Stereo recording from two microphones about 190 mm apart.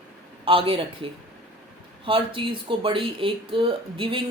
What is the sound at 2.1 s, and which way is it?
A woman's voice, 25° right (ahead or behind).